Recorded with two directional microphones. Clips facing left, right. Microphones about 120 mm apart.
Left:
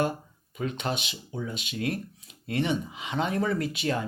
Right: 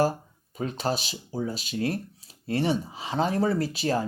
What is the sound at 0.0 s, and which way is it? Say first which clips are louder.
Speech: right 3 dB; 35° right (ahead or behind).